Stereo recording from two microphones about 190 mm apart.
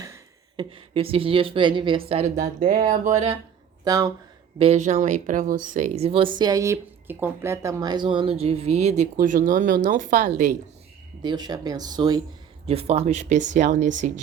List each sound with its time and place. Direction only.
0.0 s speech: 20° right (ahead or behind); by 3.3 s 35° right (ahead or behind)
3.8 s speech: 20° right (ahead or behind)
4.5 s speech: 30° right (ahead or behind)
6.4 s speech: 15° right (ahead or behind); by 10.5 s 40° right (ahead or behind)
11.2 s speech: 20° right (ahead or behind); by 14.1 s 40° right (ahead or behind)